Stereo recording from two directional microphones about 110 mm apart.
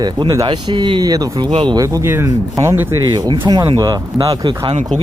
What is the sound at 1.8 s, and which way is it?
Speech, 25° right (ahead or behind).